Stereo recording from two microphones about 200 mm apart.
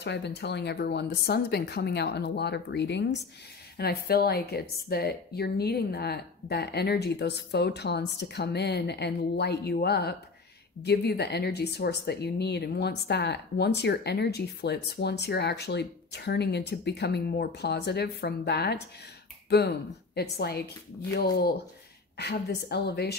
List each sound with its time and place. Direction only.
0.0 s speech: 60° left (ahead or behind)
20.2 s a woman's voice: 55° left (ahead or behind)